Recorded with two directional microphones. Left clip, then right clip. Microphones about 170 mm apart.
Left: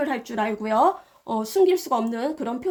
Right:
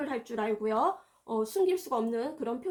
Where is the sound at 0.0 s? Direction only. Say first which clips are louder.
Left 8 dB; 50° left (ahead or behind).